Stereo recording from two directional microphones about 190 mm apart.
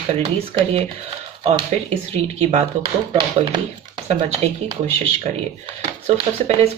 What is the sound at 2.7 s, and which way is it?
Speech, 35° right (ahead or behind).